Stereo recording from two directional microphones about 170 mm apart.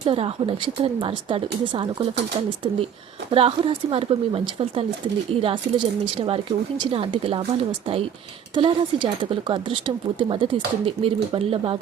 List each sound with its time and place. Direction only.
0.0 s a woman's voice: 30° right (ahead or behind)
3.2 s speech: 30° right (ahead or behind)
8.5 s speech: 30° right (ahead or behind)